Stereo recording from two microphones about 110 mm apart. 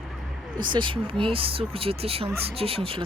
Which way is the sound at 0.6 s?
50° right (ahead or behind).